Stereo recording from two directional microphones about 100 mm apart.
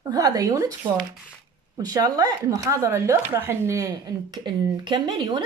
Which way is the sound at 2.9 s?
20° right (ahead or behind).